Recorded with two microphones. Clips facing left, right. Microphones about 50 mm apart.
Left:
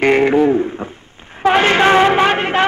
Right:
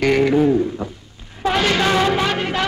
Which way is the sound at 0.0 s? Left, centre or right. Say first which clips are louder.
Left 3 dB; left.